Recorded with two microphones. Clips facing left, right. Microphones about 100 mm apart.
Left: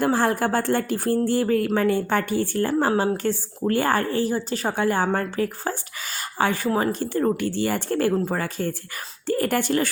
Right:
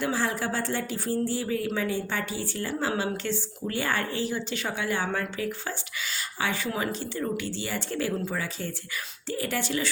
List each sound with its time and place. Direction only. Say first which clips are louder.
0.0 s speech: left 7 dB; 50° left (ahead or behind)
6.7 s speech: left 8 dB; 35° left (ahead or behind)
7.0 s speech: left 8 dB; 50° left (ahead or behind)